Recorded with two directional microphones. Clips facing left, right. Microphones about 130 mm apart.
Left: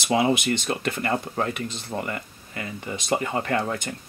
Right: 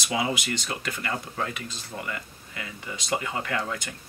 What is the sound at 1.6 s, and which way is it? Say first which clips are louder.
Speech: left 6 dB; 60° left (ahead or behind).